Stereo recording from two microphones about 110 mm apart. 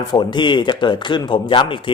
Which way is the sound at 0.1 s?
45° left (ahead or behind).